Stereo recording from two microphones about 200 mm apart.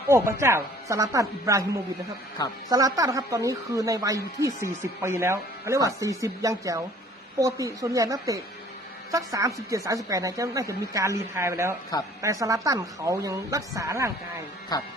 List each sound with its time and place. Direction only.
0.1 s a woman's voice: 15° right (ahead or behind)
14.7 s speech: 20° left (ahead or behind)